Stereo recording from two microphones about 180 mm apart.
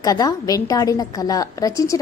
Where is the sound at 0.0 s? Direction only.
20° left (ahead or behind).